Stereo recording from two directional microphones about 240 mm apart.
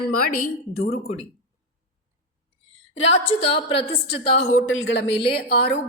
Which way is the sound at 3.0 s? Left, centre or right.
Left.